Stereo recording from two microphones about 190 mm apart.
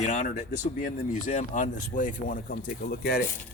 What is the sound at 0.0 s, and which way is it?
Speech, 40° left (ahead or behind).